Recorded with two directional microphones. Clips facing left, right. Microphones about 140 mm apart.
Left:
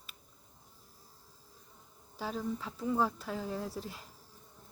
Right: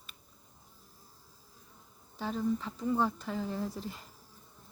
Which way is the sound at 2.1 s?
5° left (ahead or behind).